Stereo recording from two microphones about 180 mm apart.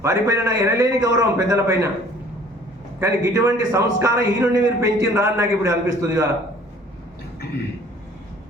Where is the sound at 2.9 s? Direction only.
15° right (ahead or behind).